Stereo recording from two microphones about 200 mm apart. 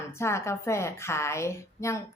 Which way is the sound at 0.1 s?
15° left (ahead or behind).